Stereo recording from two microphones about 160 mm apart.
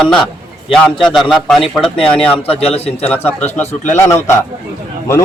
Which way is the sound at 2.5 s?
40° left (ahead or behind).